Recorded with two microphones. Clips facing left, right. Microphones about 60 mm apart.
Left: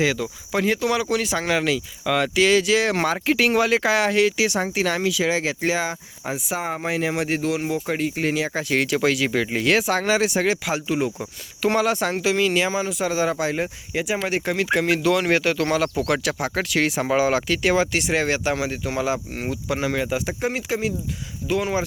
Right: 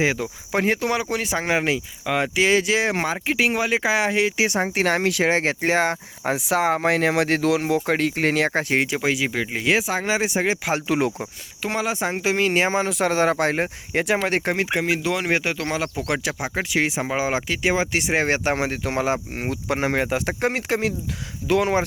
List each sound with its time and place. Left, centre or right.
0.0 s speech: right
2.9 s speech: centre; by 6.3 s right
6.3 s speech: right
7.9 s speech: right
8.7 s speech: right
10.8 s speech: right
11.6 s speech: centre
12.2 s speech: right
12.8 s speech: right
14.8 s speech: centre; by 19.5 s right
19.5 s speech: right